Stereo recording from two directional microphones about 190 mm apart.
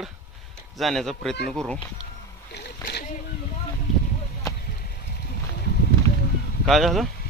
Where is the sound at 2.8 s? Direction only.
60° left (ahead or behind).